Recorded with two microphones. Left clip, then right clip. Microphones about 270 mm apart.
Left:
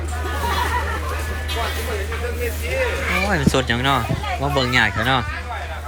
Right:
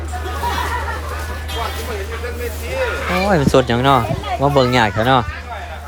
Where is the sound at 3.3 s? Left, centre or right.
Centre.